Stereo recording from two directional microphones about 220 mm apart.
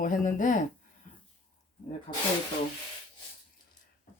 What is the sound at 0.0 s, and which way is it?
Speech, 35° left (ahead or behind).